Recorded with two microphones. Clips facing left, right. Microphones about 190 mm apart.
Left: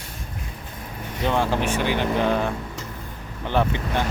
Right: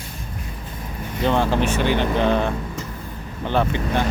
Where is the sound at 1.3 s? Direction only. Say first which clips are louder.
Right 2 dB; 10° left (ahead or behind).